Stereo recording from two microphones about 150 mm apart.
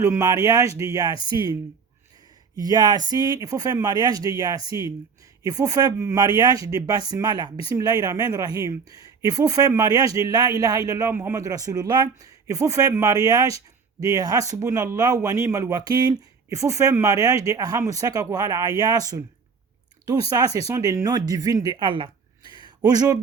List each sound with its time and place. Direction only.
0.0 s speech: 20° right (ahead or behind)
1.2 s speech: 35° left (ahead or behind)
2.6 s speech: 25° right (ahead or behind)
20.3 s speech: 20° right (ahead or behind)
22.5 s a sound: 30° right (ahead or behind)